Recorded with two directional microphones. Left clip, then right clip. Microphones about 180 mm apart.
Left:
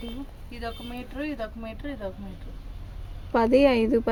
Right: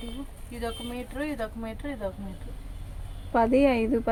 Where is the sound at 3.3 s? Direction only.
60° left (ahead or behind).